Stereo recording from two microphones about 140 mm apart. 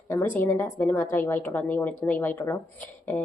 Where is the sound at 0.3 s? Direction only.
15° left (ahead or behind).